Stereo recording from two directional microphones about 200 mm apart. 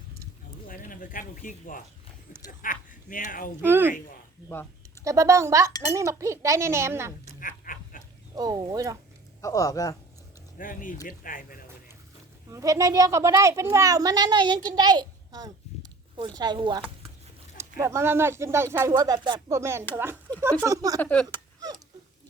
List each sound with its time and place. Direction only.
0.7 s speech: 45° left (ahead or behind)
3.6 s speech: 10° right (ahead or behind)
5.0 s speech: 15° right (ahead or behind)
7.3 s a sound: 45° left (ahead or behind)
8.4 s speech: 20° right (ahead or behind)
9.4 s a man's voice: 15° left (ahead or behind)
10.6 s speech: 40° left (ahead or behind)
12.5 s speech: 15° right (ahead or behind)
21.0 s a man's voice: 5° left (ahead or behind)
21.2 s a sound: 20° right (ahead or behind)